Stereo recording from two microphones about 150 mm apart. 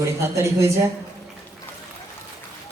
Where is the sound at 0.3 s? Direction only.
20° right (ahead or behind).